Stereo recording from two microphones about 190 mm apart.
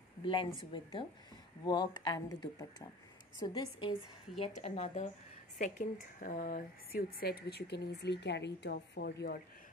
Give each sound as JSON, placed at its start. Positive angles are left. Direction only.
{"t": 0.2, "sound": "speech", "side_deg": 25}
{"t": 4.6, "sound": "speech", "side_deg": 35}